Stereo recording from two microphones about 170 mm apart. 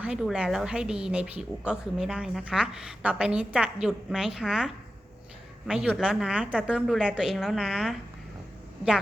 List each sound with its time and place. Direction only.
0.0 s speech: 5° right (ahead or behind)